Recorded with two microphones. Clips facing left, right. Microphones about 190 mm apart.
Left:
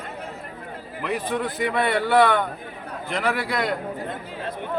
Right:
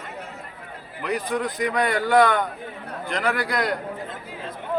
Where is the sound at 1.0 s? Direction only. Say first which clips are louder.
Even; centre (ahead or behind).